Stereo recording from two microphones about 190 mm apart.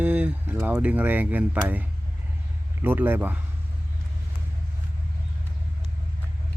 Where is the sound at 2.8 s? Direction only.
10° right (ahead or behind).